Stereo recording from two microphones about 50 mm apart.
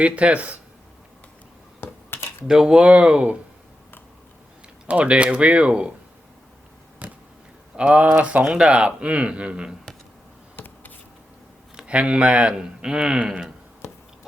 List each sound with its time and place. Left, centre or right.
0.0 s speech: right
2.1 s typing: left
2.5 s speech: centre
2.8 s speech: right
4.9 s speech: right
7.8 s speech: right
10.6 s a sound: left
11.9 s speech: right